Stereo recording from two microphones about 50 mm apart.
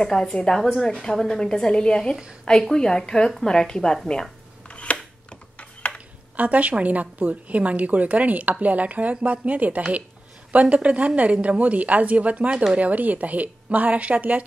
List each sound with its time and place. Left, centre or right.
0.0 s a woman's voice: centre
4.6 s a sound: left
6.3 s a woman's voice: right